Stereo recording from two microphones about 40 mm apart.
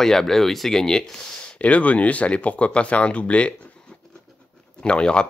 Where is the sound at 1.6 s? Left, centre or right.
Left.